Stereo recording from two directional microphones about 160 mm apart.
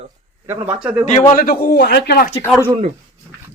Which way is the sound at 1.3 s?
70° left (ahead or behind).